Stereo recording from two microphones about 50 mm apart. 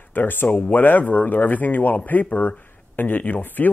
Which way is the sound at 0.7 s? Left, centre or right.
Left.